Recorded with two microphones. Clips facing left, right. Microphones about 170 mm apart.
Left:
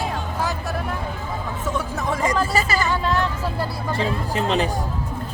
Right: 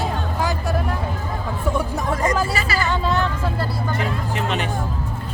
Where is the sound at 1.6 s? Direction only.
15° right (ahead or behind).